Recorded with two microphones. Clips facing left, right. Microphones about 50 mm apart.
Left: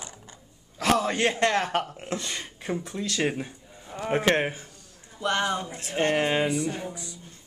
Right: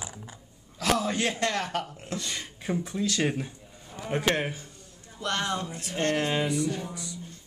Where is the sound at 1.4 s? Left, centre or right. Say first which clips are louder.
Left 5 dB; left.